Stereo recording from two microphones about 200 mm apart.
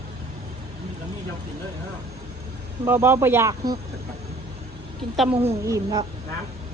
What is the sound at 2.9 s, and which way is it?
Speech, 10° right (ahead or behind).